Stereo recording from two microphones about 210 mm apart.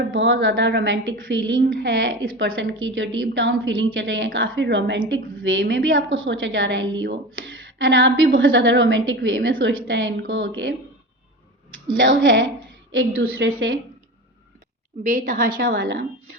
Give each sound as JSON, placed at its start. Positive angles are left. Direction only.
{"t": 0.1, "sound": "a woman's voice", "side_deg": -65}
{"t": 11.9, "sound": "a woman's voice", "side_deg": -65}
{"t": 15.0, "sound": "a woman's voice", "side_deg": -40}